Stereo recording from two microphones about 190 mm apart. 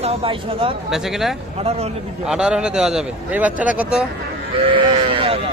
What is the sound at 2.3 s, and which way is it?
Speech, 5° right (ahead or behind).